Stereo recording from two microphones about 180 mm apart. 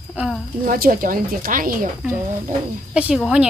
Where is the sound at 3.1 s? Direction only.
5° right (ahead or behind).